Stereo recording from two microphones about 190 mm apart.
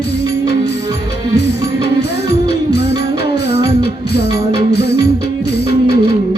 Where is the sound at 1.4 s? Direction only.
60° left (ahead or behind).